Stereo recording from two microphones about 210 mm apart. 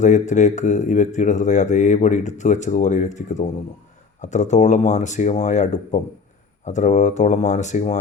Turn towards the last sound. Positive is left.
turn(degrees=35)  # may be behind; listen again after turning